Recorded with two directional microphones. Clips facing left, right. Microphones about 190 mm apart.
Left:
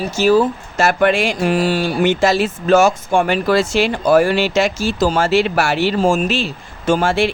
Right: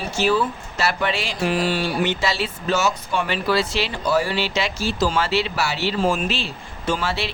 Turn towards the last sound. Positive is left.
turn(degrees=50)  # may be behind; listen again after turning